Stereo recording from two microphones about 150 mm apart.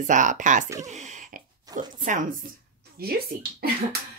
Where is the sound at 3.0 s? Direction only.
90° right.